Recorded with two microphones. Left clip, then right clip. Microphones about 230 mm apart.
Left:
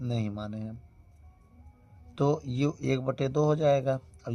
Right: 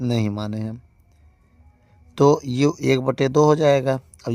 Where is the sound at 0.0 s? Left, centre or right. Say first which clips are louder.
Right 11 dB; right.